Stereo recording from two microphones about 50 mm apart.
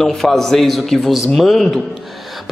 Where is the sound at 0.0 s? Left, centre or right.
Centre.